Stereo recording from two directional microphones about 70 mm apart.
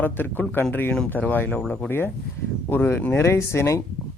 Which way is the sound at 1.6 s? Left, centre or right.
Centre.